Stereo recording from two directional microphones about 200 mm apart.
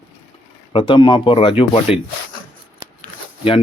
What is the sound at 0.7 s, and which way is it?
Speech, 25° left (ahead or behind).